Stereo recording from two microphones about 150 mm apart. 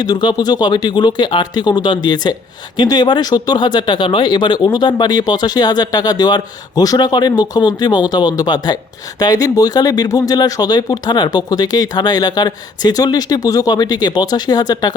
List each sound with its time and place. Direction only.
0.0 s speech: 30° left (ahead or behind)